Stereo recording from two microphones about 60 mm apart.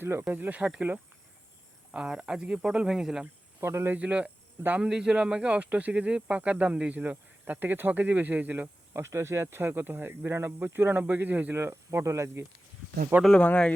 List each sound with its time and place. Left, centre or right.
0.0 s speech: right
0.3 s speech: right
1.9 s speech: centre
3.6 s speech: right
3.9 s speech: right
8.9 s speech: right
11.5 s speech: right
13.3 s speech: centre